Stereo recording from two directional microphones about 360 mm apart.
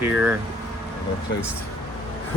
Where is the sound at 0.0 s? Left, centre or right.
Centre.